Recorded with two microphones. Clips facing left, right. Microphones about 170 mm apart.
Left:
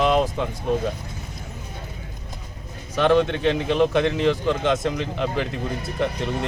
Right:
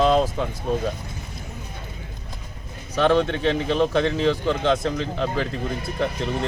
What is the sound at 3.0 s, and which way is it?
Speech, 15° left (ahead or behind).